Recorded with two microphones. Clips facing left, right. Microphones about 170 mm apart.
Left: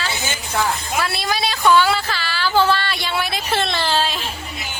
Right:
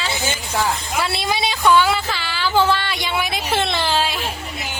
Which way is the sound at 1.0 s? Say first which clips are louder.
Right 2 dB; 25° right (ahead or behind).